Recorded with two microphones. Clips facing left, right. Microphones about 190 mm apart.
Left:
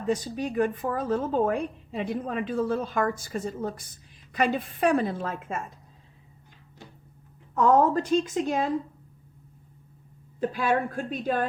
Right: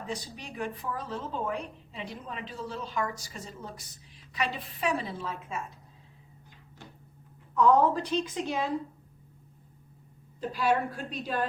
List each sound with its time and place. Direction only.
0.1 s a woman's voice: 45° left (ahead or behind)
7.5 s a woman's voice: 45° left (ahead or behind)
10.4 s a woman's voice: 55° left (ahead or behind)